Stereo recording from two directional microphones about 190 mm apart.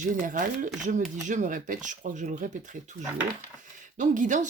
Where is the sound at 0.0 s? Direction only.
45° right (ahead or behind).